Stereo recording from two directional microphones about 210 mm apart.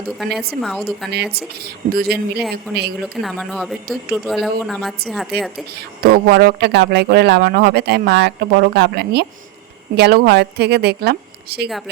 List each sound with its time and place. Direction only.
0.2 s speech: centre (ahead or behind)
1.1 s speech: 50° right (ahead or behind)
3.0 s speech: centre (ahead or behind)
5.7 s speech: 45° right (ahead or behind)